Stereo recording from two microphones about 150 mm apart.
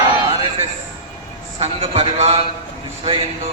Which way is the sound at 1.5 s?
40° right (ahead or behind).